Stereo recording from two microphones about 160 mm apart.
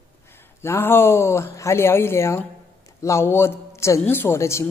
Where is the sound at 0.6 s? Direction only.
15° left (ahead or behind).